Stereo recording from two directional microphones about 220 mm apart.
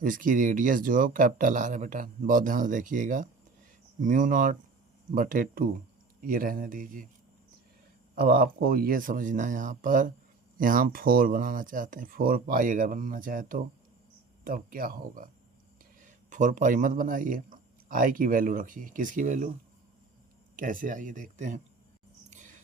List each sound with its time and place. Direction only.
0.0 s speech: 40° right (ahead or behind)
8.1 s speech: 40° right (ahead or behind)
20.6 s speech: 40° right (ahead or behind)